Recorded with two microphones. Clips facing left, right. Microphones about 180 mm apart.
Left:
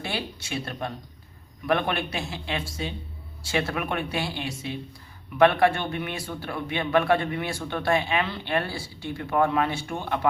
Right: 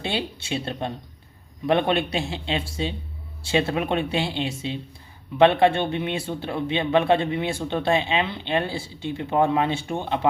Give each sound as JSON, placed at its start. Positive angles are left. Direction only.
{"t": 0.0, "sound": "a man's voice", "side_deg": -25}